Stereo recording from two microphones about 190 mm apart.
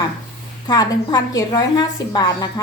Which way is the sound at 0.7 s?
20° left (ahead or behind).